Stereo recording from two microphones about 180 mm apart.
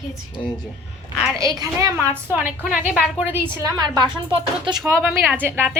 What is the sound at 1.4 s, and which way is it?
Speech, 20° right (ahead or behind).